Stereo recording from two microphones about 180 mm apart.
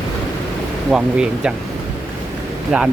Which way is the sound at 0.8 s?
5° right (ahead or behind).